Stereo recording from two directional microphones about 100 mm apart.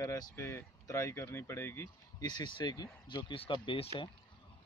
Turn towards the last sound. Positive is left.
turn(degrees=70)  # may be behind; listen again after turning